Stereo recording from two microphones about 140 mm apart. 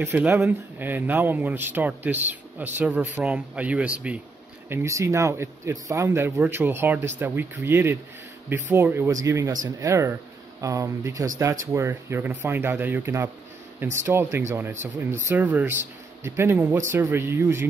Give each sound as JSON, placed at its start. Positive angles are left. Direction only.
{"t": 0.0, "sound": "speech", "side_deg": -15}
{"t": 4.6, "sound": "speech", "side_deg": -20}